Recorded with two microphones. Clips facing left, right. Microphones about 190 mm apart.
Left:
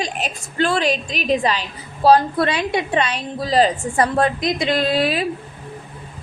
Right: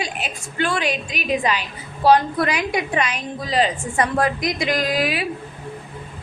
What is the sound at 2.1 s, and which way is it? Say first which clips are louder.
A woman's voice: left 2 dB; 30° left (ahead or behind).